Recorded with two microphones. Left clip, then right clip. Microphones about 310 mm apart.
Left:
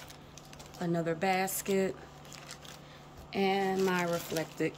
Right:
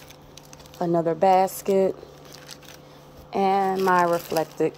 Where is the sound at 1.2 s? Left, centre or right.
Centre.